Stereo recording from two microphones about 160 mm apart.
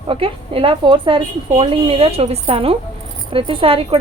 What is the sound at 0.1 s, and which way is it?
A woman's voice, 35° right (ahead or behind).